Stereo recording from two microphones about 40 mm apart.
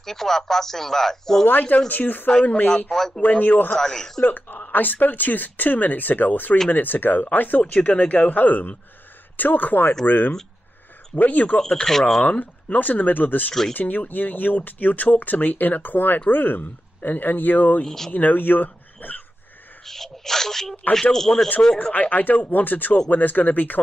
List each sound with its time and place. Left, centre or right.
0.0 s speech: centre
1.5 s speech: left
2.4 s speech: left
2.9 s speech: centre
3.2 s speech: left
3.7 s speech: centre
4.2 s speech: left
7.7 s speech: left
11.6 s speech: centre
12.2 s speech: left
17.8 s speech: centre
18.1 s speech: left
19.8 s speech: centre
22.1 s speech: left